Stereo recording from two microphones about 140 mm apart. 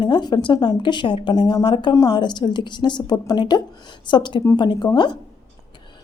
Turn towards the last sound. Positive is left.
turn(degrees=35)  # may be behind; listen again after turning